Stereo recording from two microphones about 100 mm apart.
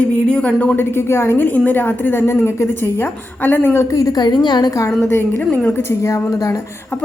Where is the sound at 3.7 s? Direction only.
35° left (ahead or behind).